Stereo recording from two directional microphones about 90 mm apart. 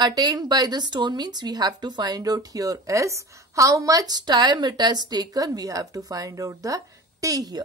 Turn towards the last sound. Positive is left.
turn(degrees=-45)  # may be behind; listen again after turning